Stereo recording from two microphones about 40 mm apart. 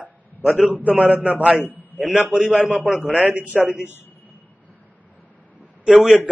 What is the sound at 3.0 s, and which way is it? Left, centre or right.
Speech, right.